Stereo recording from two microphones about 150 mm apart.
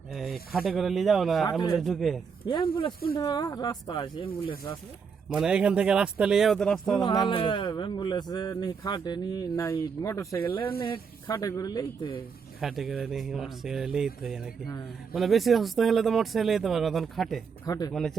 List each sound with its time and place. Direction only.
0.1 s snake: centre (ahead or behind)
0.5 s speech: centre (ahead or behind)
3.2 s speech: 25° left (ahead or behind)
5.3 s speech: 5° right (ahead or behind)
7.0 s speech: 30° left (ahead or behind); by 10.7 s 15° left (ahead or behind)
10.8 s speech: 35° left (ahead or behind)
11.3 s speech: 20° left (ahead or behind)
12.5 s speech: centre (ahead or behind)
17.7 s speech: 25° left (ahead or behind)
17.9 s speech: 5° left (ahead or behind)